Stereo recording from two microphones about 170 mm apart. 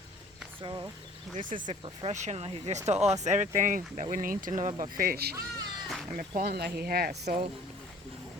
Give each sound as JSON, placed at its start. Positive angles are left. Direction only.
{"t": 0.6, "sound": "speech", "side_deg": -25}
{"t": 5.9, "sound": "cat", "side_deg": 0}
{"t": 6.1, "sound": "speech", "side_deg": -60}
{"t": 7.3, "sound": "speech", "side_deg": -45}